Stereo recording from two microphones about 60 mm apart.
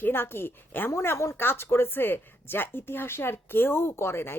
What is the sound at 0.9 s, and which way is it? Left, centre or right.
Speech, left.